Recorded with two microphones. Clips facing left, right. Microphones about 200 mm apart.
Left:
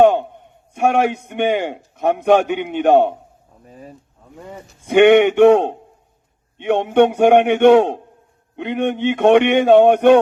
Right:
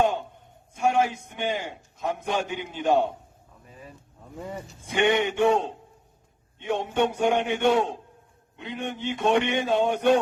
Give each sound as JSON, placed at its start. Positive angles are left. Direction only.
{"t": 0.0, "sound": "a man's voice", "side_deg": 65}
{"t": 3.7, "sound": "speech", "side_deg": 40}
{"t": 4.9, "sound": "a man's voice", "side_deg": 65}